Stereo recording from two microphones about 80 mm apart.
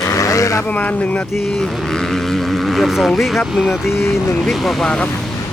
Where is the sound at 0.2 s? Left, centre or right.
Left.